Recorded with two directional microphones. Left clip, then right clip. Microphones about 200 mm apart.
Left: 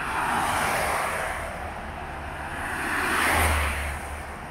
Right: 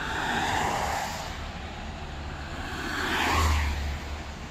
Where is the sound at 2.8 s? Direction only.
Centre (ahead or behind).